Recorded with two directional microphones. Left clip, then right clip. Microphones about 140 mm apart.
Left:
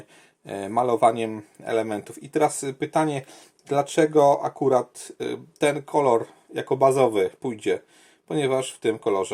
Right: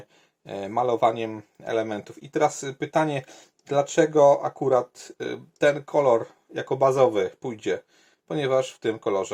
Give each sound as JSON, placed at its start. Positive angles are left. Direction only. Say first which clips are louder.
{"t": 0.4, "sound": "speech", "louder": "left 1 dB", "side_deg": 25}